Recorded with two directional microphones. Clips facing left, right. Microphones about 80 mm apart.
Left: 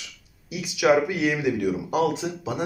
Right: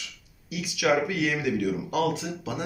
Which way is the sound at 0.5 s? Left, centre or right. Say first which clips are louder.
Left 4 dB; left.